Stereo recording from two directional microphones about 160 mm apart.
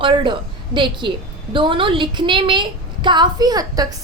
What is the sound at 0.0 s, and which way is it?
A woman's voice, 30° right (ahead or behind).